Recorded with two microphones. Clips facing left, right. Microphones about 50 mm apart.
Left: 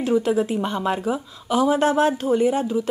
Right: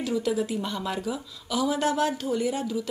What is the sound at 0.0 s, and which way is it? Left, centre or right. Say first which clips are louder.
A woman's voice: left 7 dB; left.